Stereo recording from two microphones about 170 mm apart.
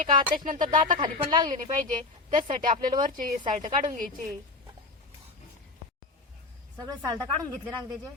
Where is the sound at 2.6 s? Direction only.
55° right (ahead or behind).